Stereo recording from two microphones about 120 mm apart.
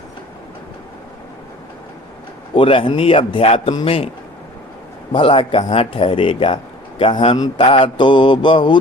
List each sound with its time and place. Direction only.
2.6 s speech: 45° left (ahead or behind)
5.1 s speech: 45° left (ahead or behind)
7.3 s mantra: 35° left (ahead or behind)